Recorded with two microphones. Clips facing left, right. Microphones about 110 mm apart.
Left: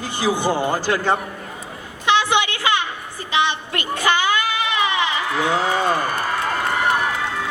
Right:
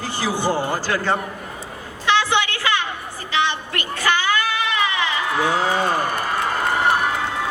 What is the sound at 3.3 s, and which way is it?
Child singing, 20° left (ahead or behind).